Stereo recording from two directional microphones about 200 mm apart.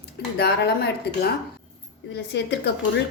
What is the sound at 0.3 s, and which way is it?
Speech, 55° left (ahead or behind).